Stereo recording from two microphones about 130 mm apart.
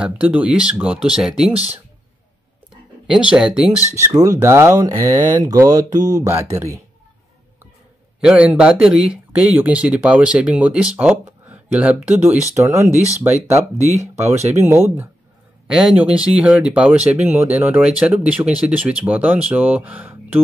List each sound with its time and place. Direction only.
0.0 s speech: 10° right (ahead or behind)
1.5 s speech: 50° right (ahead or behind)
3.1 s speech: 5° right (ahead or behind)
3.7 s speech: 25° left (ahead or behind)
4.0 s speech: 25° right (ahead or behind)
8.2 s speech: 10° right (ahead or behind)
12.5 s speech: 25° right (ahead or behind)
15.6 s speech: 5° right (ahead or behind)